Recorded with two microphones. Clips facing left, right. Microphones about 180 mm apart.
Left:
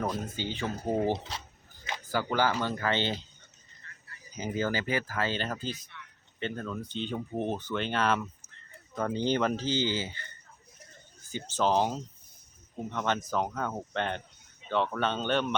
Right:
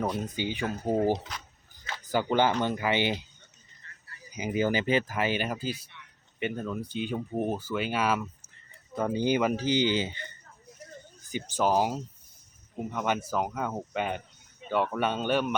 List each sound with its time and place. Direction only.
0.0 s speech: 15° right (ahead or behind)
4.3 s speech: 10° right (ahead or behind)
11.3 s speech: 15° right (ahead or behind)